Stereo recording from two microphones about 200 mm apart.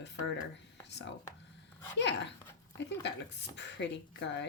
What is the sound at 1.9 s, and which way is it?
A woman's voice, 60° left (ahead or behind).